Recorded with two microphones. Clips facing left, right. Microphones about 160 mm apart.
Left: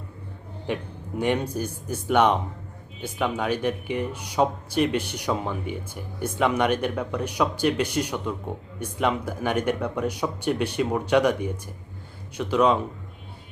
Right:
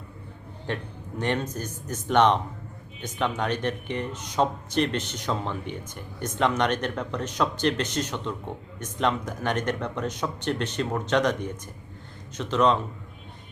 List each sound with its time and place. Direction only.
0.7 s speech: 10° left (ahead or behind)